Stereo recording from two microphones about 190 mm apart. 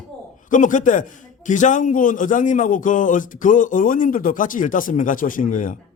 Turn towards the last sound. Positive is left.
turn(degrees=45)  # may be behind; listen again after turning